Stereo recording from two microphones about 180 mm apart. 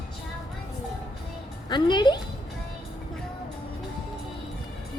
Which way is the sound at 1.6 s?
25° left (ahead or behind).